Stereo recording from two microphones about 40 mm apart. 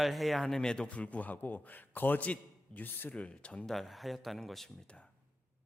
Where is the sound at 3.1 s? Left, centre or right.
Left.